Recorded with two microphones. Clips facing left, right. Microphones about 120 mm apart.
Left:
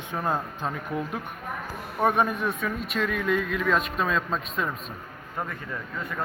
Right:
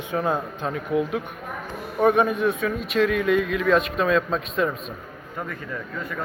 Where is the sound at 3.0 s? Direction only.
70° right (ahead or behind).